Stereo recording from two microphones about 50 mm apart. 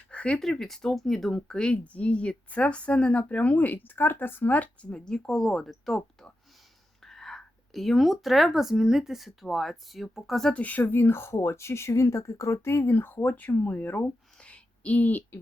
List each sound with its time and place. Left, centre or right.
0.1 s a sound: left
0.3 s speech: centre; by 4.9 s left
4.9 s speech: centre
5.3 s speech: centre
7.0 s whispering: centre
8.7 s speech: centre
10.5 s speech: left
12.6 s speech: left
13.3 s speech: left
14.4 s a sound: left